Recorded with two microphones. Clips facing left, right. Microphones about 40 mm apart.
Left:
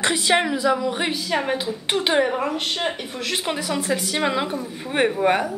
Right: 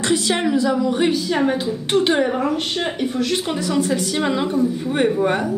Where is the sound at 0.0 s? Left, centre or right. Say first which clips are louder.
Even; left.